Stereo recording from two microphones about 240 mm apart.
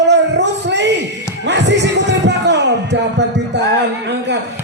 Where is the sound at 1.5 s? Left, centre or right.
Right.